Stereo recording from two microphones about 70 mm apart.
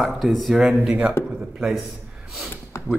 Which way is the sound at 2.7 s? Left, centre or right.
Left.